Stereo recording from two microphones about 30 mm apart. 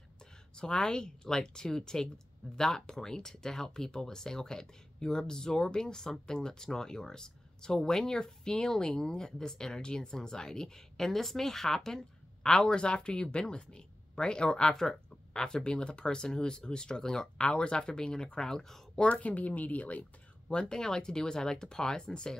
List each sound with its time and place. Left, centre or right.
0.6 s speech: left
11.0 s a woman's voice: centre
12.7 s speech: left; by 18.8 s centre
19.2 s speech: left
20.4 s speech: left